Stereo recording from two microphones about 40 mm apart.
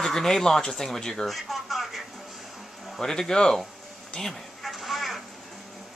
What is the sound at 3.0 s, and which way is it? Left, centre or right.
Speech, centre.